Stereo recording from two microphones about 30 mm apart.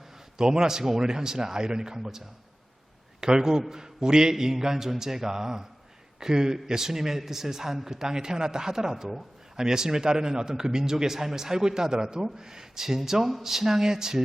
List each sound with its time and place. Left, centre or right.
0.3 s speech: right
3.2 s a man's voice: right